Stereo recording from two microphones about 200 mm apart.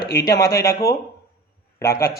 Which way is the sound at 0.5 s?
15° left (ahead or behind).